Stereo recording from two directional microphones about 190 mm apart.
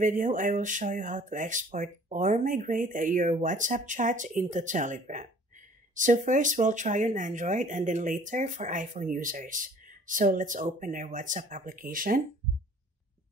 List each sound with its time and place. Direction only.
0.0 s speech: 45° right (ahead or behind)